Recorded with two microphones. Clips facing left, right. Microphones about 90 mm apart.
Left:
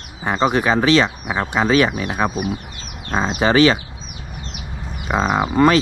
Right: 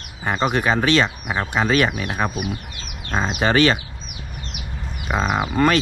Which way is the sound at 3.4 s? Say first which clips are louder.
Left 3 dB; 35° left (ahead or behind).